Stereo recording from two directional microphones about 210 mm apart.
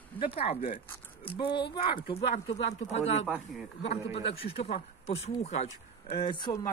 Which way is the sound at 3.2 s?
5° right (ahead or behind).